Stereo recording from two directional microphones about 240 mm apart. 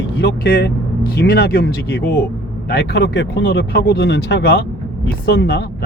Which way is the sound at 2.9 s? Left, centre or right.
Left.